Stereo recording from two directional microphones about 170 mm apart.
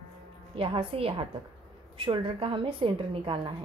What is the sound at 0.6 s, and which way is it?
A woman's voice, 35° right (ahead or behind).